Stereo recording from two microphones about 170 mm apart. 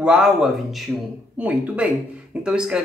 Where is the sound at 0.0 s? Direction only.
5° right (ahead or behind).